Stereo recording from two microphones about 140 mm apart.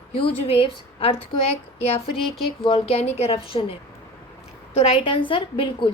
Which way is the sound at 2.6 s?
45° left (ahead or behind).